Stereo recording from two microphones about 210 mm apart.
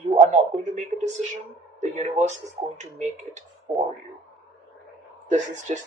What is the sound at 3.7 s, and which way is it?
Speech, 10° right (ahead or behind).